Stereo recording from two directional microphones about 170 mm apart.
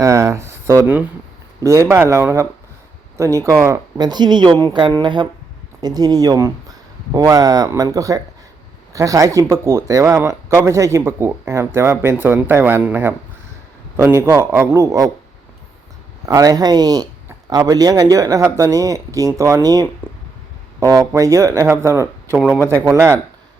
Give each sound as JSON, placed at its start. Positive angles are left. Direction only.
{"t": 0.0, "sound": "a sound", "side_deg": -20}
{"t": 1.6, "sound": "speech", "side_deg": -15}
{"t": 16.2, "sound": "speech", "side_deg": -20}